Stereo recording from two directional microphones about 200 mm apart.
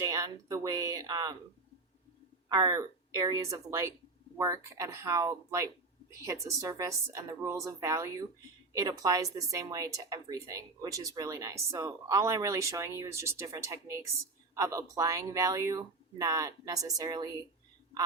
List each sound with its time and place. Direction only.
0.0 s speech: 15° right (ahead or behind)
2.5 s speech: 20° right (ahead or behind)